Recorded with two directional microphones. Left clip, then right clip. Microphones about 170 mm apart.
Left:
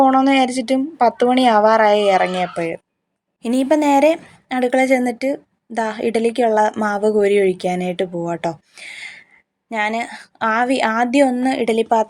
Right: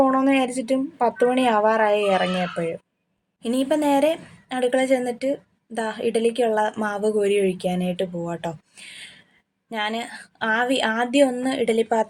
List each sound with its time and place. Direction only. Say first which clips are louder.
0.0 s a woman's voice: left 6 dB; 25° left (ahead or behind)